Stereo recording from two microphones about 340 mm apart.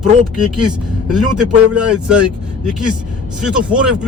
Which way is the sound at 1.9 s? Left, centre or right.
Centre.